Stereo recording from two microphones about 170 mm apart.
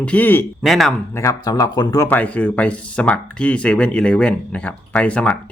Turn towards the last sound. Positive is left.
turn(degrees=5)  # may be behind; listen again after turning